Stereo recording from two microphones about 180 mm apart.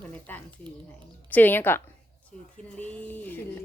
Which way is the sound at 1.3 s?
10° left (ahead or behind).